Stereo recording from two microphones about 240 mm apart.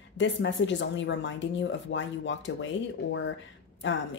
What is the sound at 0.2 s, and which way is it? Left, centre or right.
Speech, left.